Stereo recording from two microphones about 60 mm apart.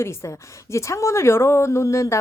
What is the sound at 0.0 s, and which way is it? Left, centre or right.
Speech, left.